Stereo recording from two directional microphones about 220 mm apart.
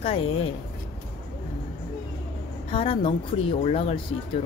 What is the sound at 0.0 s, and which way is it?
Speech, 25° left (ahead or behind).